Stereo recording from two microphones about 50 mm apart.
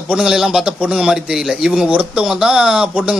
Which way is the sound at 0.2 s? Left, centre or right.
Centre.